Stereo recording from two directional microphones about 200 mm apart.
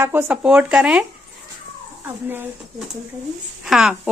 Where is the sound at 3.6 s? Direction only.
5° right (ahead or behind).